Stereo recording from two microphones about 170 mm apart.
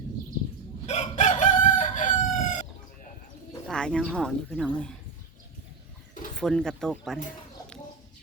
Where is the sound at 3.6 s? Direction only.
5° left (ahead or behind).